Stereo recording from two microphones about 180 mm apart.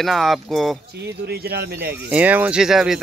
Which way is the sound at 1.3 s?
60° right (ahead or behind).